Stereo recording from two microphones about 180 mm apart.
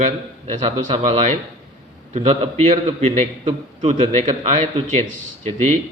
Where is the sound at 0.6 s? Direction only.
35° right (ahead or behind).